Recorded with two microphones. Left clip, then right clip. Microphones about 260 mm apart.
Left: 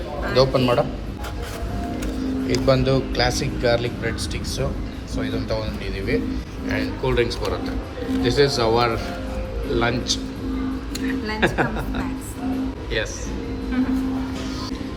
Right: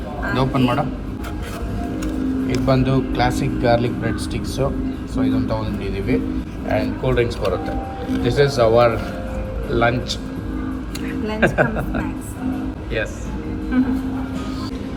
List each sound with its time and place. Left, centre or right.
0.3 s a man's voice: centre
2.6 s speech: centre